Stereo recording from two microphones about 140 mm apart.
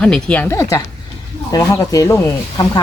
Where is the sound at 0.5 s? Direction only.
20° left (ahead or behind).